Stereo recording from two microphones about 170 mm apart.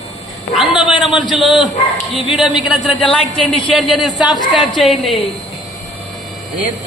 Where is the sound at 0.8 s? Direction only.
5° right (ahead or behind).